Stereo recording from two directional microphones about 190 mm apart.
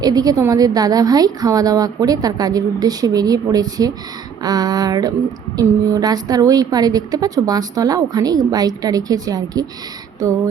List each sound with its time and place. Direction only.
0.0 s a woman's voice: 20° right (ahead or behind)